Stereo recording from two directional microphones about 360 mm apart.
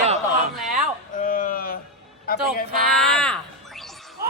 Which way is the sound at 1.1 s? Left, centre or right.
Left.